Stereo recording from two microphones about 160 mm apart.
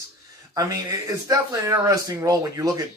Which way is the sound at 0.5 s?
20° right (ahead or behind).